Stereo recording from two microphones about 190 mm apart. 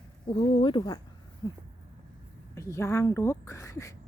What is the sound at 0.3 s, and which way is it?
Speech, 30° left (ahead or behind).